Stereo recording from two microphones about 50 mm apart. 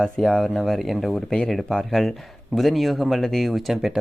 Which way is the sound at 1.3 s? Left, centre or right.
Centre.